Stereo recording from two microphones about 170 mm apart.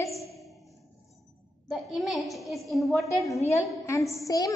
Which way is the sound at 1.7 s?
Centre (ahead or behind).